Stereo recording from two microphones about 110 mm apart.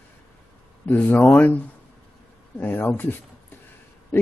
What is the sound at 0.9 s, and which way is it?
Speech, 15° left (ahead or behind).